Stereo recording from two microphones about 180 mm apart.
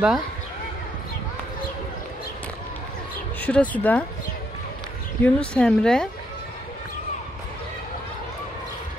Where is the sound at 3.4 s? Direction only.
10° left (ahead or behind).